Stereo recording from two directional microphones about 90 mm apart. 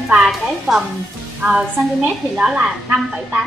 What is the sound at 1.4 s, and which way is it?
Speech, 25° right (ahead or behind).